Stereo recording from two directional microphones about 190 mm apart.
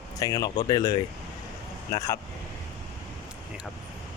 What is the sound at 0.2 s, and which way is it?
Speech, 20° left (ahead or behind).